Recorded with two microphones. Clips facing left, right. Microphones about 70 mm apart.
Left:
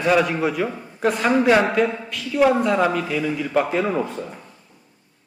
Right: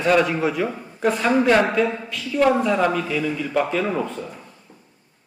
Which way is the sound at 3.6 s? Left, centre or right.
Centre.